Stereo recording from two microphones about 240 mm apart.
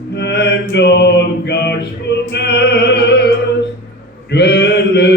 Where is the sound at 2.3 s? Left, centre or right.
Left.